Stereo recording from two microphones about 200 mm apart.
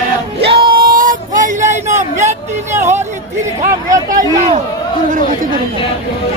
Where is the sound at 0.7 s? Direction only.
45° right (ahead or behind).